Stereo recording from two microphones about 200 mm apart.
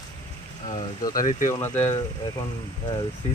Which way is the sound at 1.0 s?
20° left (ahead or behind).